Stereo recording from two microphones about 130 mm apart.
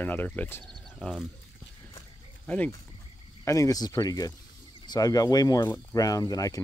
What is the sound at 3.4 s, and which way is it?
Speech, 25° left (ahead or behind).